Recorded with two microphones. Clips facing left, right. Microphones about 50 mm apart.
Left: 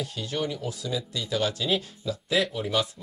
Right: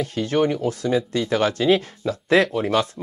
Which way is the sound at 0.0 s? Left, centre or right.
Right.